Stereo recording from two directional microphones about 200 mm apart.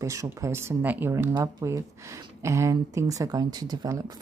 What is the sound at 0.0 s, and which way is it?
Speech, 15° right (ahead or behind).